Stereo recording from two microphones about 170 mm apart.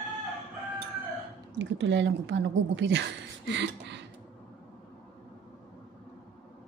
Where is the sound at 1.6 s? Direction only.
90° right.